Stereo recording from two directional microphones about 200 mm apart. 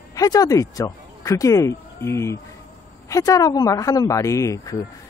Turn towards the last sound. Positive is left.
turn(degrees=15)  # may be behind; listen again after turning